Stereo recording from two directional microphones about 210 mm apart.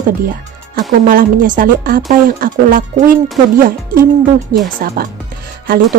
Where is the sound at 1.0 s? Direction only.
40° right (ahead or behind).